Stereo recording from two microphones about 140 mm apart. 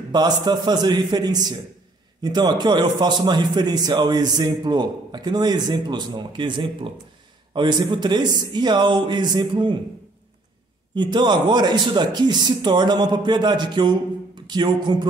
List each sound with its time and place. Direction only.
0.1 s a man's voice: 30° right (ahead or behind)
11.0 s a man's voice: 35° right (ahead or behind)